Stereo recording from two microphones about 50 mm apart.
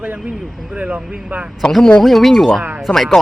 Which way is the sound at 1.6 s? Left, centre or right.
Centre.